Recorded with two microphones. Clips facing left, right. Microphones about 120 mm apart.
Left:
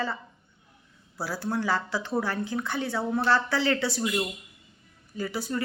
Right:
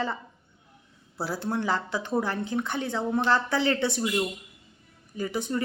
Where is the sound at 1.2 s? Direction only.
20° right (ahead or behind).